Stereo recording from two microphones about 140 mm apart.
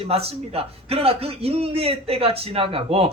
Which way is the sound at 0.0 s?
45° right (ahead or behind).